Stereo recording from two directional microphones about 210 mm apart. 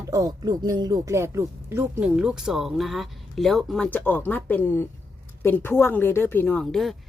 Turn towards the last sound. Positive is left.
turn(degrees=0)  # may be behind; listen again after turning